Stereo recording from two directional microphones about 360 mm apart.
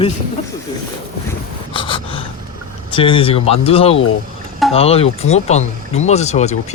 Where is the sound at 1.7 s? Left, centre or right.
Centre.